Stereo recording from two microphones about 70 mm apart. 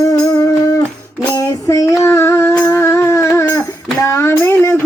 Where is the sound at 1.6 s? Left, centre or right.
Left.